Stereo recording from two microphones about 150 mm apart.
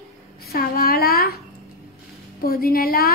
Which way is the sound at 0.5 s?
90° left.